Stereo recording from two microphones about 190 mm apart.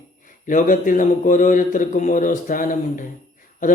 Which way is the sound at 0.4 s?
45° left (ahead or behind).